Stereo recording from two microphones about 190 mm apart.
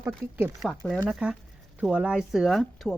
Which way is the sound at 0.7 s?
5° left (ahead or behind).